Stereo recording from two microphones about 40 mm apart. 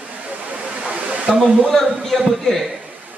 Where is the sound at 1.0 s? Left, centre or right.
Right.